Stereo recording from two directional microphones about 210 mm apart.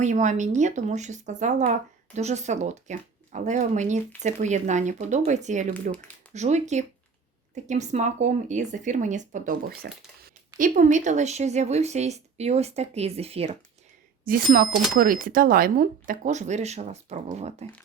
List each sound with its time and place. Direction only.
0.0 s speech: 35° right (ahead or behind)
14.3 s speech: 45° right (ahead or behind)